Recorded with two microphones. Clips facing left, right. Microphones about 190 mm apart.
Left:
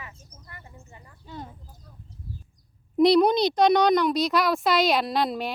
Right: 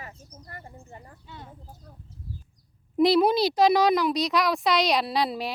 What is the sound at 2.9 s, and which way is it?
A child's voice, 5° right (ahead or behind).